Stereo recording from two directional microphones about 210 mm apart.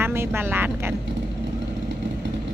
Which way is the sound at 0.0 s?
10° right (ahead or behind).